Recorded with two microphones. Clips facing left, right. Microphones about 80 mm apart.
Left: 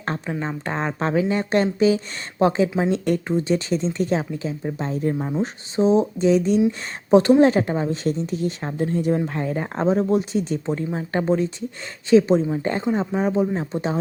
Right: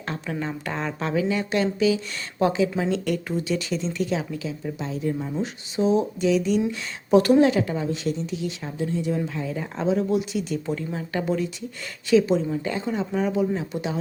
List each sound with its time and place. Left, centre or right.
0.3 s a woman's voice: left
7.5 s a woman's voice: left